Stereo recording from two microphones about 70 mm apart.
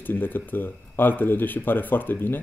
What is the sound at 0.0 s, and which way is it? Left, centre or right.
Speech, left.